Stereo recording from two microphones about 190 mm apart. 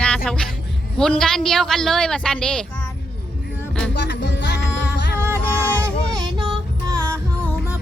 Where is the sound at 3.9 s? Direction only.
65° left (ahead or behind).